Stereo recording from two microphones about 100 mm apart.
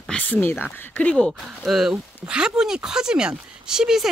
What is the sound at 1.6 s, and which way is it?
Speech, 5° right (ahead or behind).